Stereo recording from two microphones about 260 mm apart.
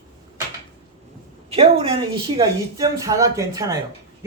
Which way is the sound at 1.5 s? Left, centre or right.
Right.